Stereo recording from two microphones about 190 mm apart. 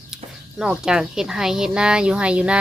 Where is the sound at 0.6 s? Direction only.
5° right (ahead or behind).